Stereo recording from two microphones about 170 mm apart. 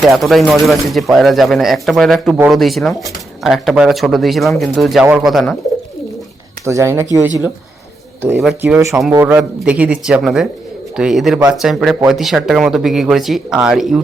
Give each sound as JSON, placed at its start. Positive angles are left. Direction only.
{"t": 0.0, "sound": "speech", "side_deg": 0}
{"t": 6.7, "sound": "speech", "side_deg": -15}
{"t": 8.2, "sound": "speech", "side_deg": 0}
{"t": 8.6, "sound": "speech", "side_deg": -15}